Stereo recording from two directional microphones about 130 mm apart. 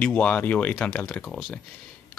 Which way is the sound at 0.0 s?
10° left (ahead or behind).